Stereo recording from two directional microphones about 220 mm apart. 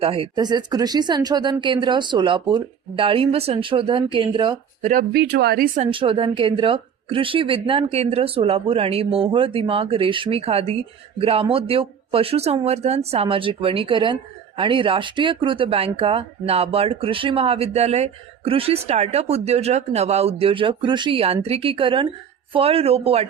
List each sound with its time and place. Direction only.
0.0 s speech: 25° right (ahead or behind)
4.9 s speech: 45° right (ahead or behind); by 23.2 s 25° right (ahead or behind)